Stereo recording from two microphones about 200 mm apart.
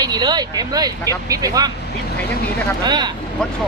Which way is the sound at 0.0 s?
20° right (ahead or behind).